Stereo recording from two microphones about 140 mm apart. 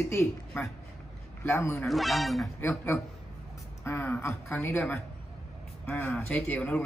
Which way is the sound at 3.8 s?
15° left (ahead or behind).